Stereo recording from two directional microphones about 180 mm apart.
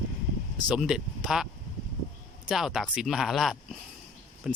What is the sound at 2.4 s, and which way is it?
Speech, centre (ahead or behind).